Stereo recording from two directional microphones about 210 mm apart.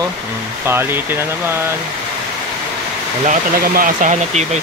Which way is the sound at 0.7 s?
10° right (ahead or behind).